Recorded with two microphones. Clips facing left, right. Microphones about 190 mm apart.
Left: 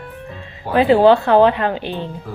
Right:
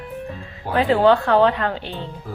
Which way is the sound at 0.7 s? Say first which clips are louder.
Left 4 dB; 20° left (ahead or behind).